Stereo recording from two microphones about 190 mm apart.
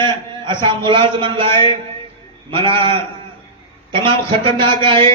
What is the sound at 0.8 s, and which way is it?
A man's voice, 25° right (ahead or behind).